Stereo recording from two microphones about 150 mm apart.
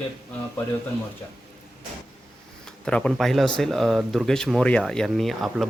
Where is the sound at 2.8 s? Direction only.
5° left (ahead or behind).